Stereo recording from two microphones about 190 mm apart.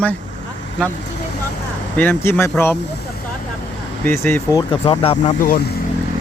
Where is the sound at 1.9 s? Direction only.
10° left (ahead or behind).